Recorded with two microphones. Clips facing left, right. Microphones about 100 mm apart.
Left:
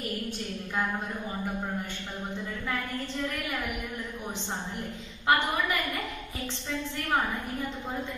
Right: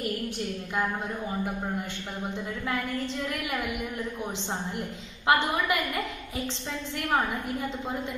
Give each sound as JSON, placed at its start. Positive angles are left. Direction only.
{"t": 4.7, "sound": "a woman's voice", "side_deg": -20}